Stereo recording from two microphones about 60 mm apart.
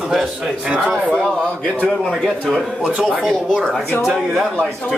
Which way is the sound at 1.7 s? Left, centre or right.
Centre.